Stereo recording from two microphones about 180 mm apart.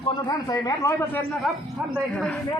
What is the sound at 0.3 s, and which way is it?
Speech, 20° left (ahead or behind).